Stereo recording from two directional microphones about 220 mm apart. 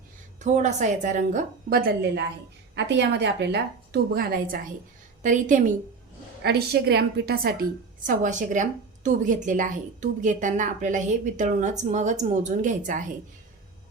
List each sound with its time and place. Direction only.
0.3 s a woman's voice: 35° right (ahead or behind)
6.4 s a woman's voice: 45° right (ahead or behind)
8.0 s a woman's voice: 35° right (ahead or behind)